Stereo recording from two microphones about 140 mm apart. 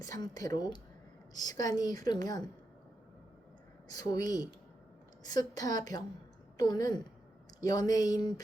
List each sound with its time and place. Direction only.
0.0 s a woman's voice: 25° left (ahead or behind)
3.8 s a woman's voice: 25° left (ahead or behind)